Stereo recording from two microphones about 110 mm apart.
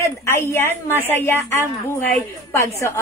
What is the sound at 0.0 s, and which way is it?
A woman's voice, 25° left (ahead or behind).